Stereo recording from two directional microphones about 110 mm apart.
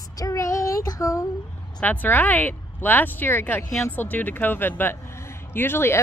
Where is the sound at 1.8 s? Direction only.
15° left (ahead or behind).